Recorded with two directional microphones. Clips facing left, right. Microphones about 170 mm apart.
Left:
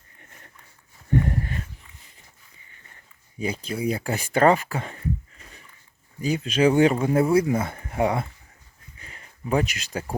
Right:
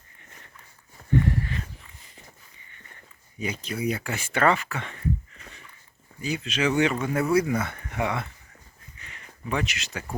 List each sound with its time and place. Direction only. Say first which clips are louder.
1.3 s a sound: even; 45° left (ahead or behind)
3.3 s speech: left 3 dB; 30° left (ahead or behind)
6.2 s speech: left 6 dB; 40° left (ahead or behind)
9.5 s speech: left 5 dB; 35° left (ahead or behind)